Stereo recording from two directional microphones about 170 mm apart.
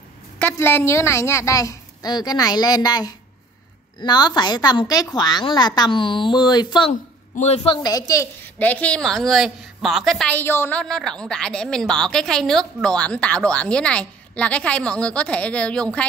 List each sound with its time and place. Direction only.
0.4 s a woman's voice: 10° left (ahead or behind)
6.9 s a woman's voice: 40° left (ahead or behind); by 10.3 s centre (ahead or behind)
10.3 s a woman's voice: 10° left (ahead or behind)